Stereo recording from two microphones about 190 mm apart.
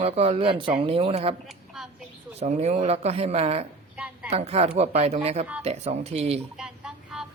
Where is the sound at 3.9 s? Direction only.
5° right (ahead or behind).